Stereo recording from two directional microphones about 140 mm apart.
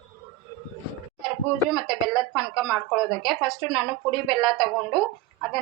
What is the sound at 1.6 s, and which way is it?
A woman's voice, centre (ahead or behind).